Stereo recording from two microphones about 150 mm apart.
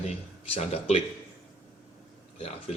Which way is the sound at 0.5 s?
45° left (ahead or behind).